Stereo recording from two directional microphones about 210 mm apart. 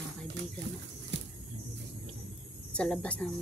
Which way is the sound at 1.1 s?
55° right (ahead or behind).